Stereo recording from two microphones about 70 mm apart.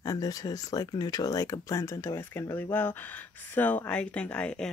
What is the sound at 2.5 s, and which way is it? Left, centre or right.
Speech, left.